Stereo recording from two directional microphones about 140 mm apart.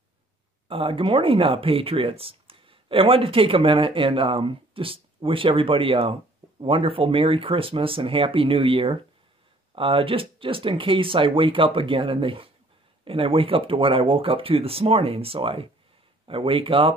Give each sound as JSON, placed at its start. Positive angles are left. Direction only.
{"t": 0.7, "sound": "speech", "side_deg": -40}